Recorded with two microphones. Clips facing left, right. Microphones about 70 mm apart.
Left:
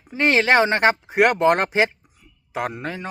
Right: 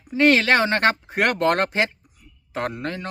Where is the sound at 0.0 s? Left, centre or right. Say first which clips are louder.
Right 2 dB; left.